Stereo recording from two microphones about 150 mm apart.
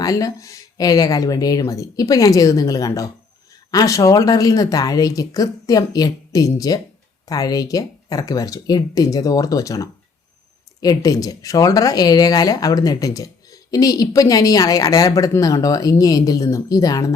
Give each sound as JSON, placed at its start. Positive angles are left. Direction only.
{"t": 0.0, "sound": "speech", "side_deg": 25}